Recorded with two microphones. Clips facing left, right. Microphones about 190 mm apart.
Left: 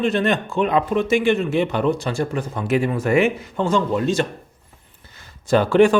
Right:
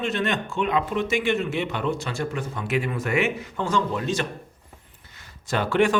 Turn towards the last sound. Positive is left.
turn(degrees=35)  # may be behind; listen again after turning